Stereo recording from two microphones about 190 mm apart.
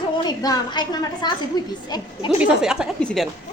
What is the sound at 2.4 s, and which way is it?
Speech, 5° right (ahead or behind).